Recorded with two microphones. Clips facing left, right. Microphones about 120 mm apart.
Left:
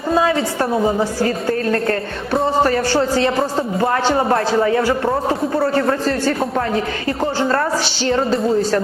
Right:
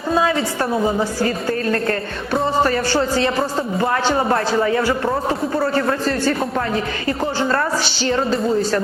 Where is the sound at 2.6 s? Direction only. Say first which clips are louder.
Left 2 dB; 35° left (ahead or behind).